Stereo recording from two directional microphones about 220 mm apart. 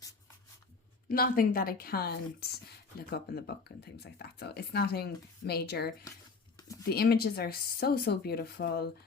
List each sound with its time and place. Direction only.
1.0 s speech: 40° left (ahead or behind)
6.6 s a sound: 15° left (ahead or behind)
6.8 s speech: 45° left (ahead or behind)